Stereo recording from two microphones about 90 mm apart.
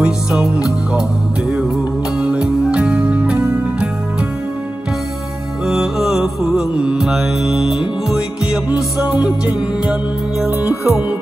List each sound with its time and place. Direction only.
0.0 s music: 10° right (ahead or behind)
2.1 s music: 10° right (ahead or behind)
5.7 s music: 5° right (ahead or behind)
10.6 s music: 35° left (ahead or behind)